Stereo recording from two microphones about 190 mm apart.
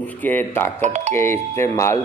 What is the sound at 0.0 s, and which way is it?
Speech, 10° left (ahead or behind).